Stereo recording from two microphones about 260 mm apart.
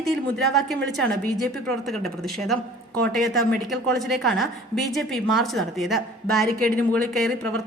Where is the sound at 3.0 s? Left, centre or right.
Centre.